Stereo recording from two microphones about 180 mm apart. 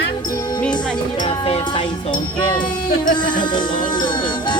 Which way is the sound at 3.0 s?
25° left (ahead or behind).